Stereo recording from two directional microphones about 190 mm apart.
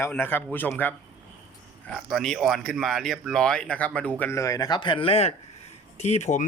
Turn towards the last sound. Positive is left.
turn(degrees=35)  # may be behind; listen again after turning